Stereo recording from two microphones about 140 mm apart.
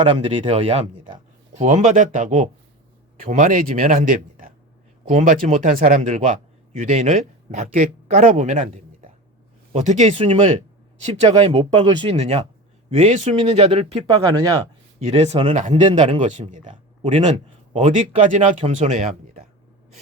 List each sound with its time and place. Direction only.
0.2 s speech: 40° right (ahead or behind)
1.5 s a man's voice: 55° right (ahead or behind)
10.2 s speech: 40° right (ahead or behind)
16.2 s speech: 60° right (ahead or behind)